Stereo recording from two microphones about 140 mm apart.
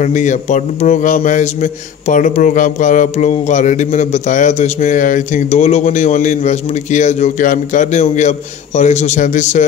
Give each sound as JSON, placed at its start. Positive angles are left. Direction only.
{"t": 0.0, "sound": "a man's voice", "side_deg": 60}